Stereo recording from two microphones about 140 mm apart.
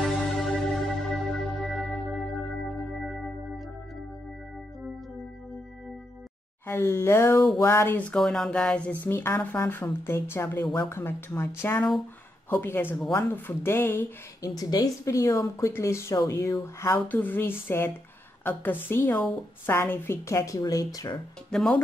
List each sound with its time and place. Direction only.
0.0 s music: centre (ahead or behind)
6.7 s a sound: 15° left (ahead or behind)
13.1 s speech: 15° left (ahead or behind)
16.8 s a sound: 15° left (ahead or behind)
19.6 s speech: 15° left (ahead or behind)
21.5 s speech: 5° left (ahead or behind)